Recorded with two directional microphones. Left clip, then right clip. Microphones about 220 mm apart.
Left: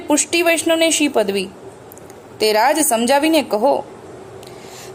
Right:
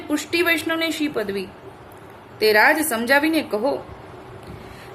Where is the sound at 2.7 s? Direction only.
20° left (ahead or behind).